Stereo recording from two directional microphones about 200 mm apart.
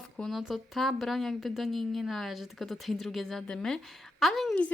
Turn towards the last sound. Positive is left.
turn(degrees=5)  # may be behind; listen again after turning